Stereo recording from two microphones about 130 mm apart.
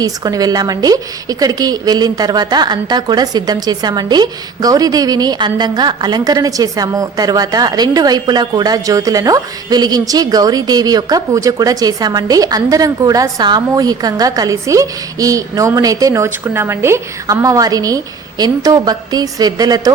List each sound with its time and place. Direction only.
0.0 s a woman's voice: 30° right (ahead or behind)